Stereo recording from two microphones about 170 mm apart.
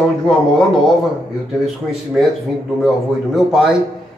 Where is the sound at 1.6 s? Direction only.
Centre (ahead or behind).